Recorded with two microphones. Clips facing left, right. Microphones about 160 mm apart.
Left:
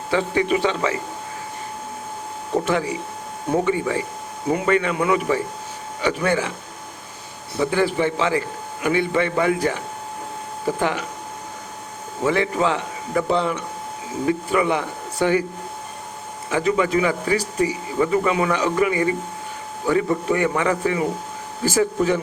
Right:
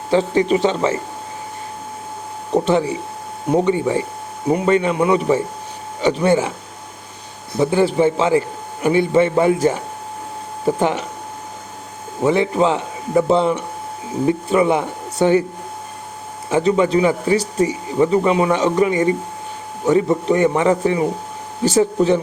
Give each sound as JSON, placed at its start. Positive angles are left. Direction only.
{"t": 0.1, "sound": "a man's voice", "side_deg": -30}
{"t": 2.5, "sound": "speech", "side_deg": -25}
{"t": 7.6, "sound": "a man's voice", "side_deg": -30}
{"t": 10.7, "sound": "speech", "side_deg": -25}
{"t": 12.2, "sound": "speech", "side_deg": -30}
{"t": 16.5, "sound": "speech", "side_deg": -30}